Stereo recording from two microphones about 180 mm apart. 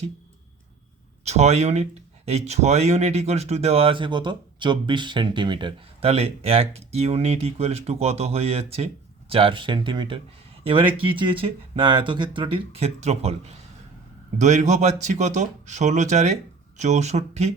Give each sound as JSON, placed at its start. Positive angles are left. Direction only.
{"t": 1.2, "sound": "speech", "side_deg": -35}